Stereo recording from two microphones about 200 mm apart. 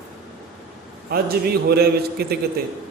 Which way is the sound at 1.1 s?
50° right (ahead or behind).